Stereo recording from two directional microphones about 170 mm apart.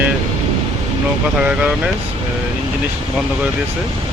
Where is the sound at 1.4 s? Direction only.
10° right (ahead or behind).